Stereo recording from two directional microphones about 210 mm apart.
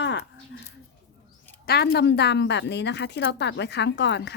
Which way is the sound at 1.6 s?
50° left (ahead or behind).